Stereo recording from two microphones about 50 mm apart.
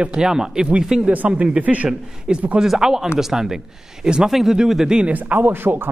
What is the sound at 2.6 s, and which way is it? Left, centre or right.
Speech, centre.